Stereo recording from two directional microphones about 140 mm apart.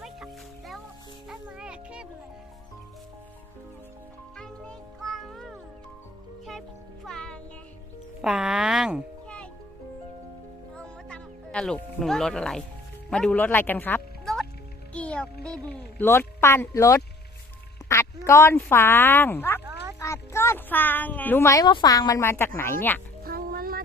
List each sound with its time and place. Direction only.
0.0 s music: centre (ahead or behind)
4.4 s music: 5° left (ahead or behind)
7.0 s music: 5° left (ahead or behind)
8.2 s speech: 5° right (ahead or behind)
10.8 s music: 5° left (ahead or behind)
13.1 s a child's voice: 5° left (ahead or behind); by 17.0 s 20° left (ahead or behind)
17.8 s music: 25° left (ahead or behind)
18.3 s a child's voice: 20° left (ahead or behind)
19.6 s music: 20° right (ahead or behind)
20.0 s speech: 20° left (ahead or behind)
23.2 s a sound: 90° right